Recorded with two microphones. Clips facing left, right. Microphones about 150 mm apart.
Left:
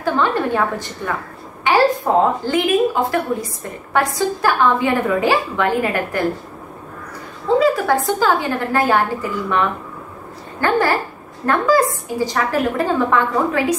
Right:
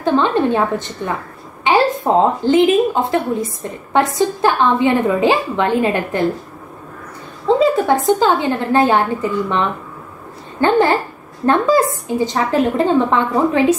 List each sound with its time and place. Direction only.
0.0 s a woman's voice: 20° right (ahead or behind)
7.5 s a woman's voice: 25° right (ahead or behind)